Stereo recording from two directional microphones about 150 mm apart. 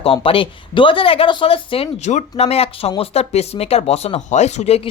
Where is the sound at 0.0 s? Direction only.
35° left (ahead or behind).